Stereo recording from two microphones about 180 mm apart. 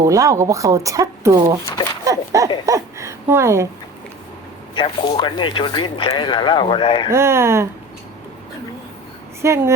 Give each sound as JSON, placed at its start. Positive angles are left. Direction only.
{"t": 0.0, "sound": "speech", "side_deg": -15}
{"t": 2.0, "sound": "a sound", "side_deg": -20}
{"t": 2.6, "sound": "speech", "side_deg": -15}
{"t": 4.7, "sound": "speech", "side_deg": 25}
{"t": 7.1, "sound": "speech", "side_deg": -15}
{"t": 9.4, "sound": "speech", "side_deg": -15}